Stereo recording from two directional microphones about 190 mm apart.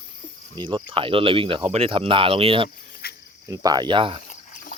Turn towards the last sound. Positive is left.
turn(degrees=45)  # may be behind; listen again after turning